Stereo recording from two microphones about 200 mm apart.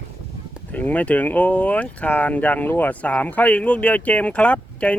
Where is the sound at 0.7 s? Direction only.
10° left (ahead or behind).